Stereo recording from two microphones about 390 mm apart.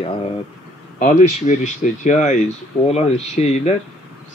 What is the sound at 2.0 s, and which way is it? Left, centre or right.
Speech, centre.